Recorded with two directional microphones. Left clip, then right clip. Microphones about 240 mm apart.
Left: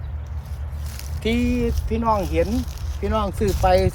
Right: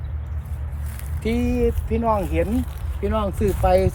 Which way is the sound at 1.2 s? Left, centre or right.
Left.